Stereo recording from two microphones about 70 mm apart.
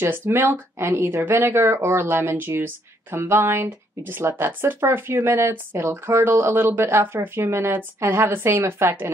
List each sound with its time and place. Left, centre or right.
0.0 s speech: right